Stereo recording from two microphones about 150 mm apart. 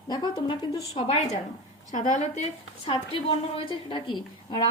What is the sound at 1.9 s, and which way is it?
Speech, 55° left (ahead or behind).